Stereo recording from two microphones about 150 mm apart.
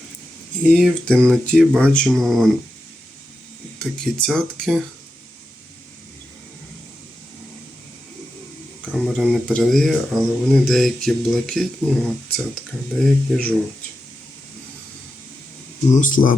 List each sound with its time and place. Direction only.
0.6 s speech: 5° left (ahead or behind)
3.9 s speech: 5° left (ahead or behind)
8.9 s speech: 5° left (ahead or behind)
15.9 s speech: 60° left (ahead or behind)